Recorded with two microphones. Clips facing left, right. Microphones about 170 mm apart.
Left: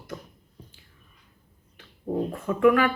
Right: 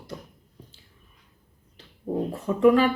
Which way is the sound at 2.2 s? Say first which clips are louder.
Right 1 dB; 20° right (ahead or behind).